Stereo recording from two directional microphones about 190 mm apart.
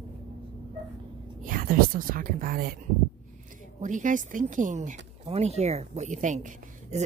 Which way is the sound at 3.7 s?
40° right (ahead or behind).